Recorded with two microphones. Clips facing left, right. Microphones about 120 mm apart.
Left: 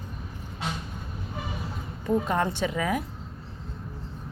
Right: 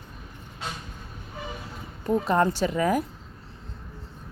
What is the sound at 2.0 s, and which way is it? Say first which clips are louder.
Speech: right 3 dB; 35° right (ahead or behind).